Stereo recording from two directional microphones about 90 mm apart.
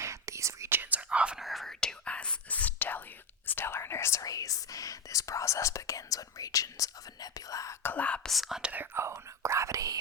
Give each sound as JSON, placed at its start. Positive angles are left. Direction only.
{"t": 0.0, "sound": "whispering", "side_deg": -35}
{"t": 0.8, "sound": "whispering", "side_deg": -20}
{"t": 1.5, "sound": "whispering", "side_deg": 0}
{"t": 7.8, "sound": "whispering", "side_deg": 20}
{"t": 8.3, "sound": "whispering", "side_deg": 0}
{"t": 8.7, "sound": "whispering", "side_deg": -25}